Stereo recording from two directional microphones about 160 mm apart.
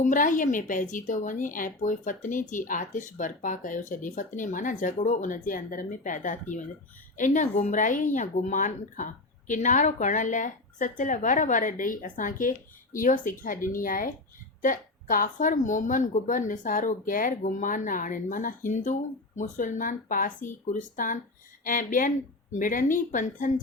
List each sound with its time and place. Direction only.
0.0 s a woman's voice: 55° left (ahead or behind)